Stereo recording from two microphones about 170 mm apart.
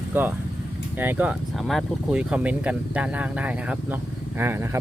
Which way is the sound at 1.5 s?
Centre (ahead or behind).